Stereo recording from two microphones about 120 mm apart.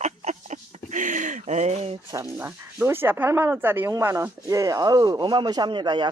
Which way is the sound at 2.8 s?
20° right (ahead or behind).